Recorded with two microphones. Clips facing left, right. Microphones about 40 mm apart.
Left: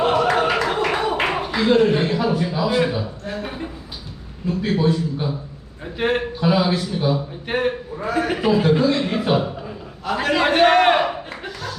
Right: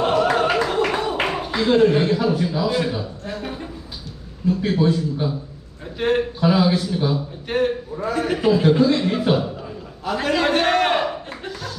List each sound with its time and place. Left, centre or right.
0.1 s music: centre
0.9 s a sound: centre
1.5 s speech: centre
4.4 s a man's voice: left
4.9 s a man's voice: centre
10.1 s speech: centre